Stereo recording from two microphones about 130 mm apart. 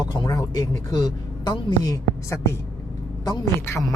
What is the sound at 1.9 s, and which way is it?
A woman's voice, 25° left (ahead or behind).